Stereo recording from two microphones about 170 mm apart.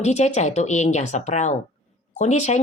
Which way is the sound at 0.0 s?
45° left (ahead or behind).